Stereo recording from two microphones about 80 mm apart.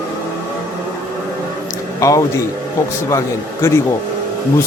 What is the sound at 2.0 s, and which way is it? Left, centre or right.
A man's voice, left.